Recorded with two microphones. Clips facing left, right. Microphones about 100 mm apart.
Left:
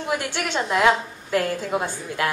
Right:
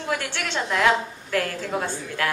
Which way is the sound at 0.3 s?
15° left (ahead or behind).